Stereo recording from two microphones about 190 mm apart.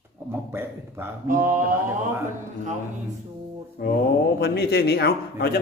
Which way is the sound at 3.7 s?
50° left (ahead or behind).